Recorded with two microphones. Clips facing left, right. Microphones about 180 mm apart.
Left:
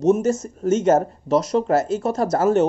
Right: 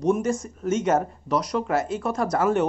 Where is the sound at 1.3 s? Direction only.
25° left (ahead or behind).